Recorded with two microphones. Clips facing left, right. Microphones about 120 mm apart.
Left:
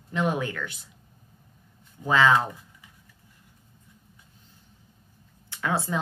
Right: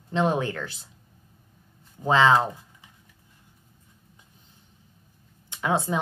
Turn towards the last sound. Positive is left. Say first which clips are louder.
# right 2 dB
turn(degrees=-20)  # may be behind; listen again after turning